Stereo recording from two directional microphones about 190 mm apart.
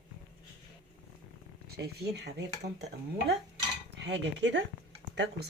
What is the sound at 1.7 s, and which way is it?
Speech, 60° right (ahead or behind).